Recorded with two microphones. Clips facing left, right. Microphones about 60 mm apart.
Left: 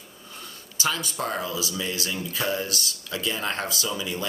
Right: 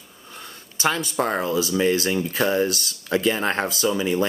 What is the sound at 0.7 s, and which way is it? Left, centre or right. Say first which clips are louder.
Speech: right 5 dB; right.